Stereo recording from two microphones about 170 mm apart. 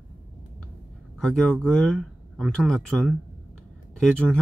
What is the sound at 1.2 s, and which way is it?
Speech, 5° left (ahead or behind).